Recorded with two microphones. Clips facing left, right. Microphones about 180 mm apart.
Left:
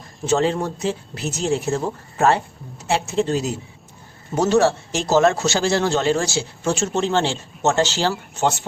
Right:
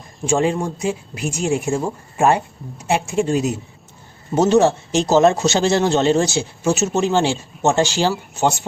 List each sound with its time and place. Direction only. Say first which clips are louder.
0.3 s speech: right 1 dB; 10° right (ahead or behind)
6.7 s speech: right 3 dB; 10° right (ahead or behind)